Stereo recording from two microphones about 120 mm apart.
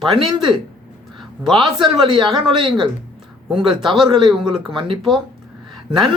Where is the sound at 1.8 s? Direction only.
40° right (ahead or behind).